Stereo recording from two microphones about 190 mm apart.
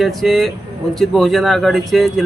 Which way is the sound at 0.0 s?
Centre (ahead or behind).